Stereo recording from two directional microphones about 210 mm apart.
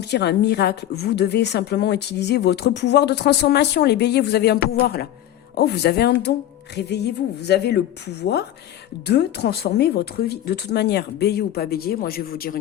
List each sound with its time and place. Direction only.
0.0 s a woman's voice: 50° left (ahead or behind)